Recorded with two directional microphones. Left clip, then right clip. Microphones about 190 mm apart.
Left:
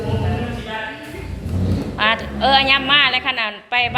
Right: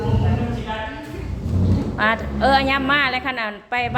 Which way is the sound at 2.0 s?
25° right (ahead or behind).